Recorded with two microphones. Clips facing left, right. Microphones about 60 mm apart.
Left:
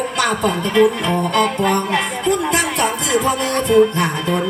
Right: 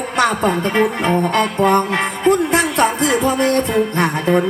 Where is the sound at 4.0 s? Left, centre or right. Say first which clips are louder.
Right 3 dB; right.